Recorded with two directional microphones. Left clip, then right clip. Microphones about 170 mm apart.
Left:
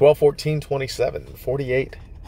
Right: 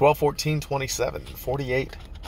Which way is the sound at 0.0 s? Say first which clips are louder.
Left 5 dB; 25° left (ahead or behind).